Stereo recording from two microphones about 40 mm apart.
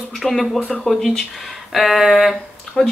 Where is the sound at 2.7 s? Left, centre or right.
Centre.